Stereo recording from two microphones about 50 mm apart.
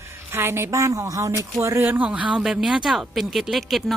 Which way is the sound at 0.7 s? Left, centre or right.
Right.